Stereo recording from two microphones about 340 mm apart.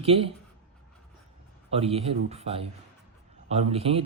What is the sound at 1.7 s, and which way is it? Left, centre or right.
Speech, centre.